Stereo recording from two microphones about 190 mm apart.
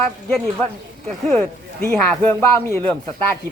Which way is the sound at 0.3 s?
5° left (ahead or behind).